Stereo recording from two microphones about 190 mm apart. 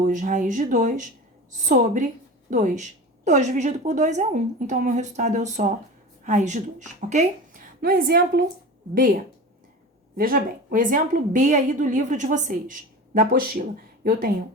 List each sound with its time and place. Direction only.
0.1 s a woman's voice: 40° right (ahead or behind)
7.8 s a woman's voice: 50° right (ahead or behind)
10.2 s a woman's voice: 50° right (ahead or behind)
13.1 s a woman's voice: 50° right (ahead or behind)